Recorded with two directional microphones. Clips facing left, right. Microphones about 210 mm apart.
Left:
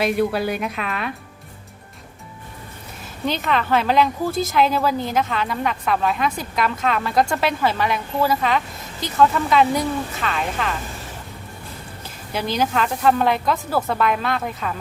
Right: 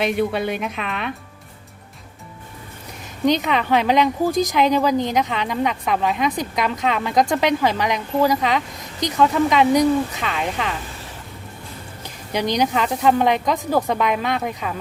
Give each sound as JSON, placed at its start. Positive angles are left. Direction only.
{"t": 0.0, "sound": "a woman's voice", "side_deg": 0}
{"t": 3.2, "sound": "a woman's voice", "side_deg": -15}
{"t": 12.0, "sound": "a woman's voice", "side_deg": -15}